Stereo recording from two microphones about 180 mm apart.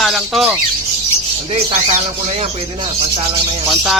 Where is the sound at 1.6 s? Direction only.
35° right (ahead or behind).